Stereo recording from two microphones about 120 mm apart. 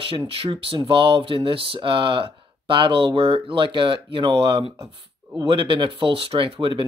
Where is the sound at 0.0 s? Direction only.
50° right (ahead or behind).